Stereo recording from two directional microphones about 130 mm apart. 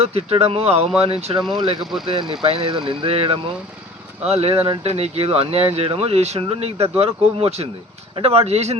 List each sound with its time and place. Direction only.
0.0 s speech: 50° right (ahead or behind)